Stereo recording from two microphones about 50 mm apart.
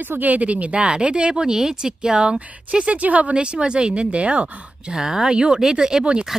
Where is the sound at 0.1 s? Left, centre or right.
Right.